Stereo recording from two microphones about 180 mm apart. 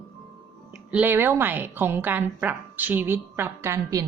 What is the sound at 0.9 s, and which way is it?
A woman's voice, 10° right (ahead or behind).